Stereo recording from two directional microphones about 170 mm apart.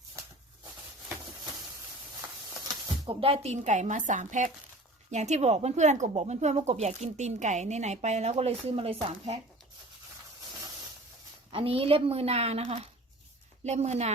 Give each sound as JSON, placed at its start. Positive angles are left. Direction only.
{"t": 2.2, "sound": "snake", "side_deg": -20}
{"t": 3.1, "sound": "speech", "side_deg": -35}
{"t": 11.5, "sound": "speech", "side_deg": -30}